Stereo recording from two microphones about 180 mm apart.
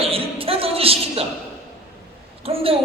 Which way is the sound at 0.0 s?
30° right (ahead or behind).